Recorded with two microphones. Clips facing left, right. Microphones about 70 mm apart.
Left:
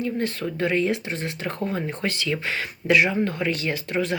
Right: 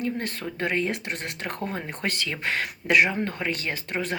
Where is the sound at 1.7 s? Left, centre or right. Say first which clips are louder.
Left 3 dB; right.